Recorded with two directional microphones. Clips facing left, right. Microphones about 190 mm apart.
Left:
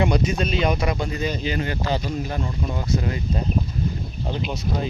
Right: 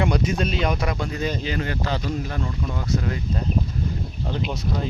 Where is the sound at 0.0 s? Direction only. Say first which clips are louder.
Left 1 dB; centre (ahead or behind).